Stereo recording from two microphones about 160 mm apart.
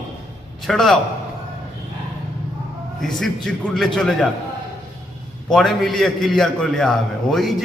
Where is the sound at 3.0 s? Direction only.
Centre (ahead or behind).